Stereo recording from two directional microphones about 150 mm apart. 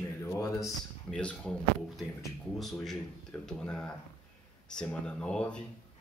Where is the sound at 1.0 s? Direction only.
5° left (ahead or behind).